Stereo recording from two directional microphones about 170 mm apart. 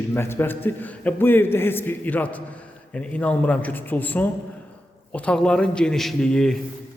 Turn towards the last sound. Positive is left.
turn(degrees=5)  # may be behind; listen again after turning